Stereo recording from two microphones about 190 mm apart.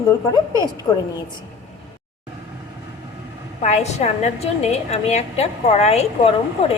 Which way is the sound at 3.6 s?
35° left (ahead or behind).